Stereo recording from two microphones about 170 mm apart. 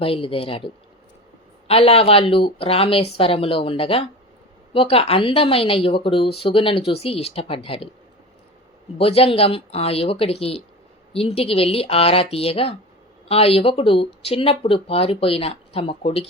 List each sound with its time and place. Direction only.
0.0 s speech: 30° left (ahead or behind)
9.0 s speech: 35° left (ahead or behind)